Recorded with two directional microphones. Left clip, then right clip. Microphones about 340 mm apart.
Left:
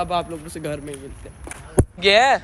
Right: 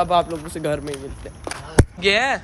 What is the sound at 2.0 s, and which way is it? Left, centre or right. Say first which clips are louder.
Speech: left 6 dB; centre.